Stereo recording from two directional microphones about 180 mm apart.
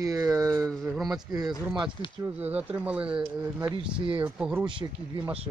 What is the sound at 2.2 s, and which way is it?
Speech, 10° right (ahead or behind).